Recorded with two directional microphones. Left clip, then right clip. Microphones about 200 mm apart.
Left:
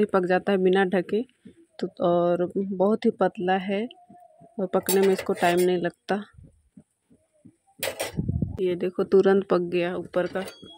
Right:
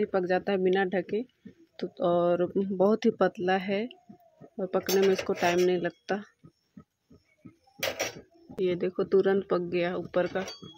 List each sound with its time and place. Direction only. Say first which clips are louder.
0.0 s speech: left 5 dB; 20° left (ahead or behind)
8.5 s speech: left 2 dB; 10° left (ahead or behind)